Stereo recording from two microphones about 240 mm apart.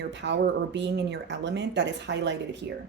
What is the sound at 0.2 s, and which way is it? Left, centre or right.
A woman's voice, right.